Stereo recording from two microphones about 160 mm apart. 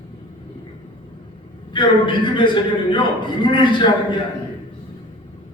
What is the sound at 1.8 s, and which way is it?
A man's voice, 30° left (ahead or behind).